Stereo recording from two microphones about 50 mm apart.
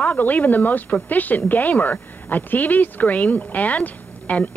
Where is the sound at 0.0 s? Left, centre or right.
Left.